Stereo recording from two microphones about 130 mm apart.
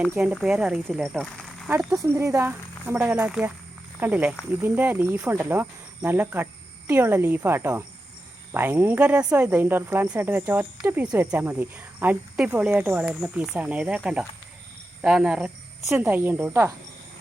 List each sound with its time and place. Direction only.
0.4 s speech: 5° right (ahead or behind)
1.9 s speech: 25° right (ahead or behind)